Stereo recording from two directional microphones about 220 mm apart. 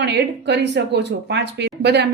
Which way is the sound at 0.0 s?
50° right (ahead or behind).